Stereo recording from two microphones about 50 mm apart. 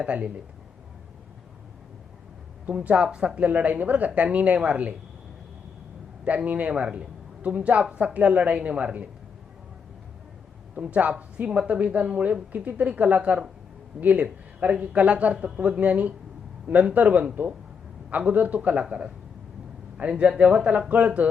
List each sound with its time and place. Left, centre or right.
0.0 s a woman's voice: right
2.8 s a woman's voice: right
6.2 s a woman's voice: right
10.8 s a woman's voice: right